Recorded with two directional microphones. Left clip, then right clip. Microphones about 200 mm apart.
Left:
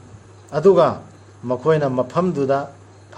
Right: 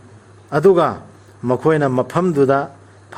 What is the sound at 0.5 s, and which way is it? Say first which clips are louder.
Speech: right 1 dB; 55° right (ahead or behind).